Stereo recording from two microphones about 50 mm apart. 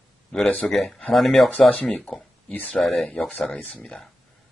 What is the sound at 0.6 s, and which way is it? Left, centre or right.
Speech, centre.